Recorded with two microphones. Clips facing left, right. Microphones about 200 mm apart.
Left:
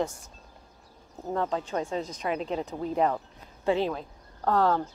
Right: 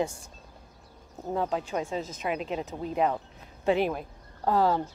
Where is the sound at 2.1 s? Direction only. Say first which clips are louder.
Left 1 dB; 20° right (ahead or behind).